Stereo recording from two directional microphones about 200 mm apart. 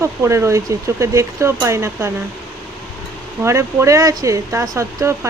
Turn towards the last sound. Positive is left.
turn(degrees=-15)  # may be behind; listen again after turning